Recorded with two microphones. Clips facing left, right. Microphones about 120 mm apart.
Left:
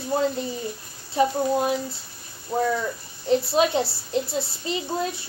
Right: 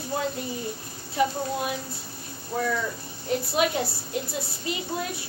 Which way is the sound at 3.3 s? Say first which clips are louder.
Left 4 dB; 30° left (ahead or behind).